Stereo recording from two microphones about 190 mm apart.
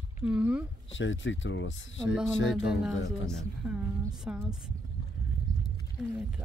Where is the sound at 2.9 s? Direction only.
90° left.